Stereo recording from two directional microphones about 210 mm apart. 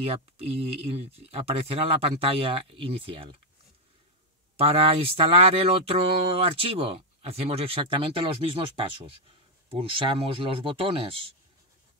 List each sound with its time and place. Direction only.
0.0 s speech: 25° right (ahead or behind)
4.6 s speech: 30° right (ahead or behind)